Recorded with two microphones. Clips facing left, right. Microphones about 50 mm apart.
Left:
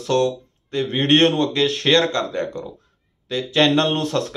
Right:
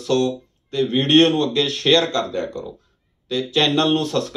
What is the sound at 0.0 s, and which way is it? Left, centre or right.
Speech, left.